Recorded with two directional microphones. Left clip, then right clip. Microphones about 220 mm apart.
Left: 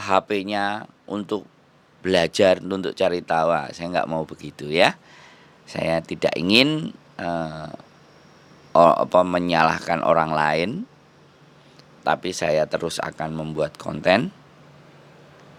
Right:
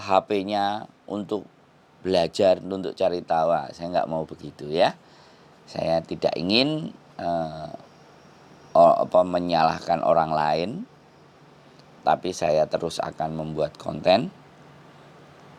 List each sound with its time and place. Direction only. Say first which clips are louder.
0.0 s speech: left 1 dB; 20° left (ahead or behind)
12.0 s speech: even; 20° left (ahead or behind)